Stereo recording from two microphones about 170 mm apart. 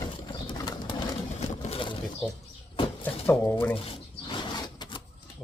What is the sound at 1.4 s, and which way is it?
Vehicle, 40° left (ahead or behind).